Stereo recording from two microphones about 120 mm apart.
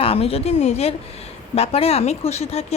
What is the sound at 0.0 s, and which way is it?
Speech, 55° left (ahead or behind).